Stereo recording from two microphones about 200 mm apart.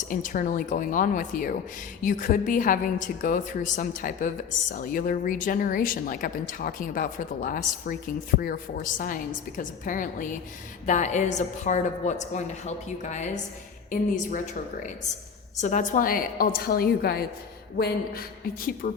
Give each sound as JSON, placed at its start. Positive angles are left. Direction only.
{"t": 0.1, "sound": "a woman's voice", "side_deg": 40}
{"t": 9.0, "sound": "a woman's voice", "side_deg": 40}
{"t": 15.6, "sound": "speech", "side_deg": 40}